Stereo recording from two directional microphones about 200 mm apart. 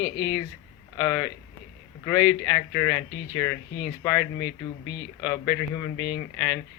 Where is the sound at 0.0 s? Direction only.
15° left (ahead or behind).